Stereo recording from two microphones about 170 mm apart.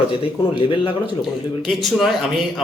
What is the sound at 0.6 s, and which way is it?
Speech, 30° left (ahead or behind).